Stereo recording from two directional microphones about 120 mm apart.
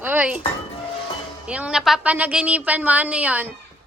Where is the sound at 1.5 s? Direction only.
10° right (ahead or behind).